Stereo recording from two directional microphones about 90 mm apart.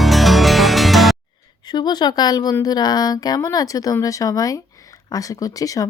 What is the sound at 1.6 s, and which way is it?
Speech, 50° left (ahead or behind).